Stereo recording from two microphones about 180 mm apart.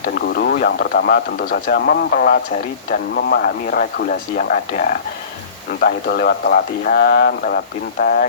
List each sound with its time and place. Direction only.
0.0 s speech: 60° left (ahead or behind)